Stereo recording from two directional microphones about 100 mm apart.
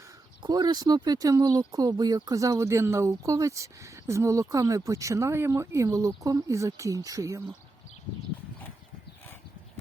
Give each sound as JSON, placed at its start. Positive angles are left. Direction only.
{"t": 0.4, "sound": "speech", "side_deg": -45}